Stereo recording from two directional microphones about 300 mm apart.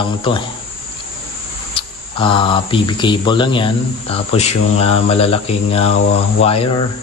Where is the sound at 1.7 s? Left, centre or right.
Centre.